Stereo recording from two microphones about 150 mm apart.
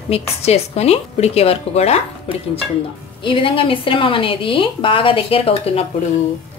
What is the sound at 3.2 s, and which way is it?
Speech, 35° left (ahead or behind).